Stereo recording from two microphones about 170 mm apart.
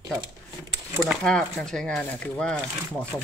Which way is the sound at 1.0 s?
5° left (ahead or behind).